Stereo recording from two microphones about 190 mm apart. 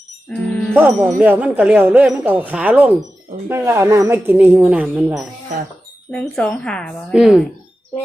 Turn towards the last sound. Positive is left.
turn(degrees=-5)  # may be behind; listen again after turning